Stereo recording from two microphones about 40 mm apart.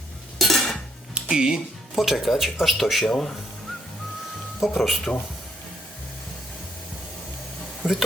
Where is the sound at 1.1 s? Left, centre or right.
Centre.